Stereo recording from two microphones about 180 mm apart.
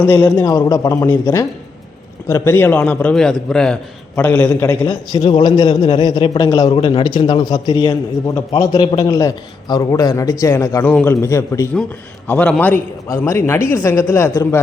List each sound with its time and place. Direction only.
0.0 s a man's voice: 10° left (ahead or behind)
5.2 s a man's voice: 25° left (ahead or behind)